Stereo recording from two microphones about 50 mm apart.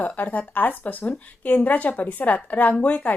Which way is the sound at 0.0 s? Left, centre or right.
Left.